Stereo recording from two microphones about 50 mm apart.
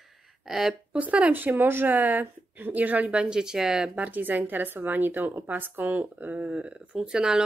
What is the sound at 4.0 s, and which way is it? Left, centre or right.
Speech, right.